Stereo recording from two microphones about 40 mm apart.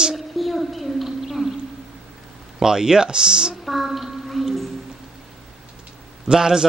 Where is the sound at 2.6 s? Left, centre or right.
Centre.